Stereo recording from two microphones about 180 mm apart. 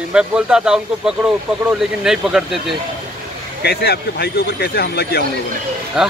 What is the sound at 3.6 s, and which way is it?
Speech, 60° left (ahead or behind).